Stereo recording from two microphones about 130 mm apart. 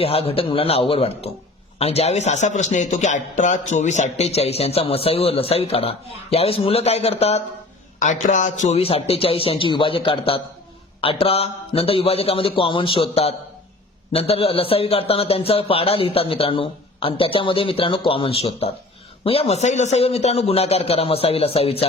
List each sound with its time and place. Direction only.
0.0 s a man's voice: 50° left (ahead or behind)
7.9 s speech: 70° left (ahead or behind)
8.8 s a man's voice: 50° left (ahead or behind)